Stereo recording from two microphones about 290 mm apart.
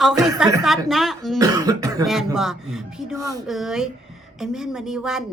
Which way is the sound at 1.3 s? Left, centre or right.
Centre.